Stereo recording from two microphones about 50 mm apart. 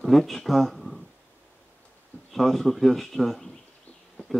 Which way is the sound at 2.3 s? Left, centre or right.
Centre.